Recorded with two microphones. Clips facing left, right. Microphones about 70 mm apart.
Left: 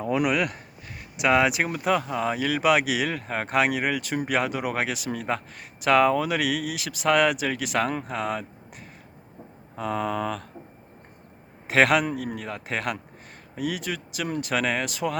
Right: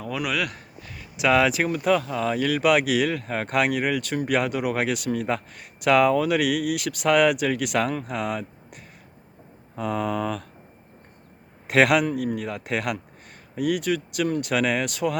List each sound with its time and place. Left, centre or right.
0.0 s speech: left
1.3 s speech: centre
11.7 s speech: centre